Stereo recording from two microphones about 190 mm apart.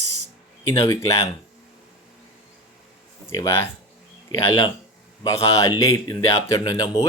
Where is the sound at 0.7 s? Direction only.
15° left (ahead or behind).